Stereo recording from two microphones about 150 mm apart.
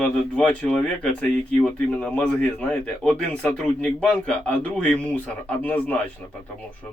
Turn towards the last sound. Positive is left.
turn(degrees=10)  # may be behind; listen again after turning